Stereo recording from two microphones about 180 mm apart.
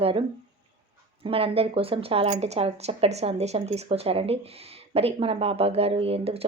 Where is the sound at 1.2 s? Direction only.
30° right (ahead or behind).